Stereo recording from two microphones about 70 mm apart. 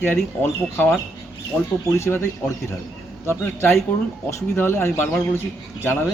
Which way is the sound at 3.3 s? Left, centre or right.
Left.